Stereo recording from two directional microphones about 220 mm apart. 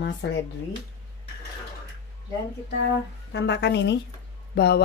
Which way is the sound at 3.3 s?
50° left (ahead or behind).